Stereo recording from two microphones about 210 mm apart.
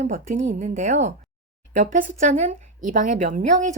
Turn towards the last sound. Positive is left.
turn(degrees=-35)  # may be behind; listen again after turning